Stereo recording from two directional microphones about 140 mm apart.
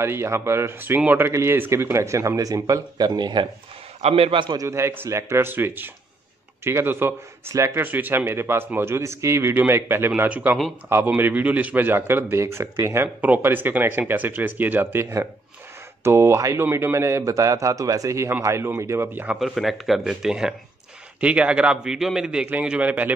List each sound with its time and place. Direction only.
0.0 s speech: 20° right (ahead or behind)
4.0 s speech: 45° right (ahead or behind); by 19.3 s 15° right (ahead or behind)
19.4 s speech: centre (ahead or behind)